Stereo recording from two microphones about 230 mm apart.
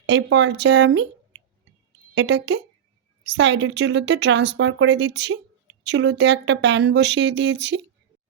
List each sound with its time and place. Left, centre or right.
0.0 s speech: right